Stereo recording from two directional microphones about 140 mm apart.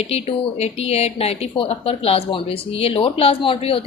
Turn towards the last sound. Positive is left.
turn(degrees=40)  # may be behind; listen again after turning